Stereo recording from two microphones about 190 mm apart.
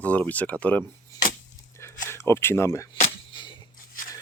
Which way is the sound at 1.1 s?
15° left (ahead or behind).